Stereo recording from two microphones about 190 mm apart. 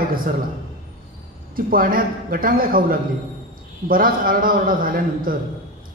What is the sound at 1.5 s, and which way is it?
A man's voice, 50° right (ahead or behind).